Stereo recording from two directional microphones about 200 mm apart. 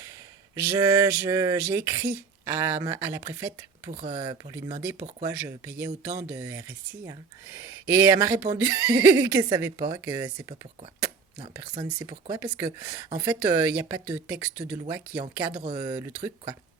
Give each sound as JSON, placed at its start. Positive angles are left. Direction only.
{"t": 0.5, "sound": "speech", "side_deg": -15}
{"t": 11.5, "sound": "speech", "side_deg": -20}
{"t": 15.6, "sound": "speech", "side_deg": -20}